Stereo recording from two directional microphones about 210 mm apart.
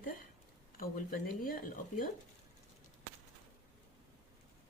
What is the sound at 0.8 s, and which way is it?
Speech, 40° left (ahead or behind).